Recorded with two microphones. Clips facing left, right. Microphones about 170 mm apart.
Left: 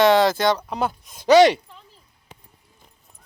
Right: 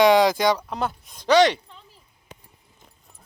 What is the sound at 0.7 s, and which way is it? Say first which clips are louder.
Speech: left 2 dB; centre (ahead or behind).